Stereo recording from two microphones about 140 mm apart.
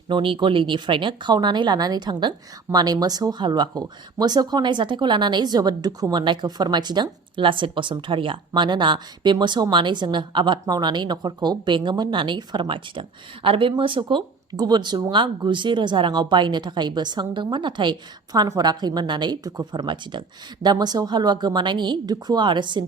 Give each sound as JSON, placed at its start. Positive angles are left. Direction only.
{"t": 0.1, "sound": "speech", "side_deg": -35}